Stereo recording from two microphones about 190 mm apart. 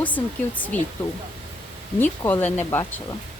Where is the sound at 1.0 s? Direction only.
5° left (ahead or behind).